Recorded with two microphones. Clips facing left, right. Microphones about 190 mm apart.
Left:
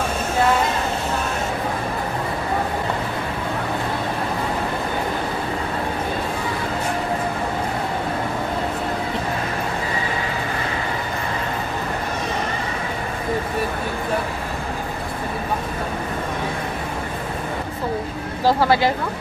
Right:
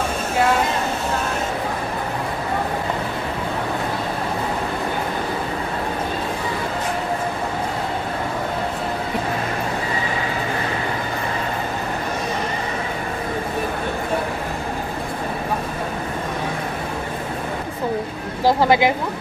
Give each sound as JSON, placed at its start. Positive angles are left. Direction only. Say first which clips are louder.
{"t": 18.4, "sound": "speech", "louder": "right 1 dB", "side_deg": -15}